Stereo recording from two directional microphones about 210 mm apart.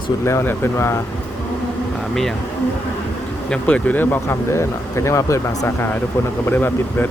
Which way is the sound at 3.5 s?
5° left (ahead or behind).